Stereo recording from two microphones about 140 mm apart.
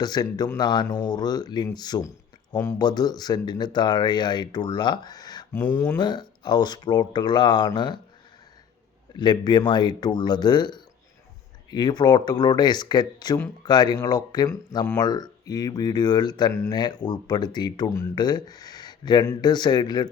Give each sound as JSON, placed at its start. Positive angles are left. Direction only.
{"t": 0.0, "sound": "speech", "side_deg": 30}
{"t": 5.6, "sound": "speech", "side_deg": 20}
{"t": 6.0, "sound": "speech", "side_deg": 30}
{"t": 9.1, "sound": "speech", "side_deg": 30}